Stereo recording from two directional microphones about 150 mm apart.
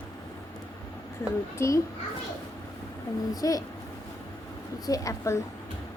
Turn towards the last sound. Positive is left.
turn(degrees=20)  # may be behind; listen again after turning